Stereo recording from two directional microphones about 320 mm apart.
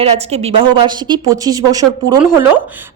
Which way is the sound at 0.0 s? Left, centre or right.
Centre.